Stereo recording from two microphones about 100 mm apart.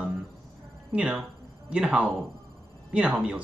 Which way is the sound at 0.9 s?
10° right (ahead or behind).